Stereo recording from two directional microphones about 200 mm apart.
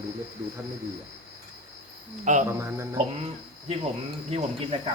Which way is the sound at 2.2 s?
40° right (ahead or behind).